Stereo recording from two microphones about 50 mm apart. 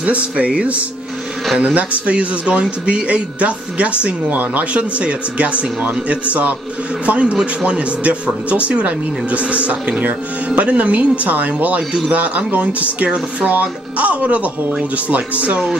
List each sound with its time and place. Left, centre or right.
0.0 s speech: right